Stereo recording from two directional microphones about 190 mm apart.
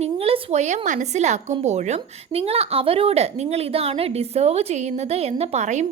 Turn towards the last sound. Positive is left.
turn(degrees=-35)  # may be behind; listen again after turning